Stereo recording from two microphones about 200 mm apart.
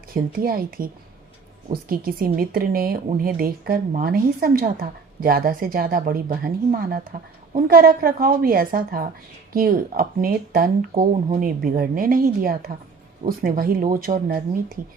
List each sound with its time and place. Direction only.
0.1 s a woman's voice: 45° right (ahead or behind)